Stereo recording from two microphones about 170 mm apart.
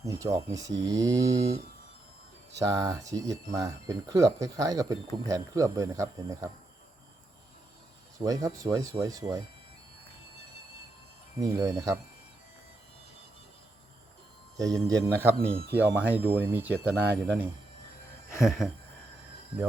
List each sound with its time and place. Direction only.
0.0 s speech: 20° right (ahead or behind)
2.6 s speech: 20° right (ahead or behind)
8.2 s speech: 20° right (ahead or behind)
11.3 s speech: 20° right (ahead or behind)
14.6 s speech: 20° right (ahead or behind)
18.3 s a sound: centre (ahead or behind)